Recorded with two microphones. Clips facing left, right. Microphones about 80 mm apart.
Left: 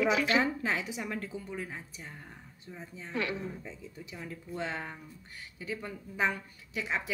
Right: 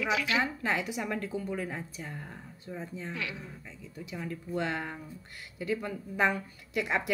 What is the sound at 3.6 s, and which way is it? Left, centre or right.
A woman's voice, centre.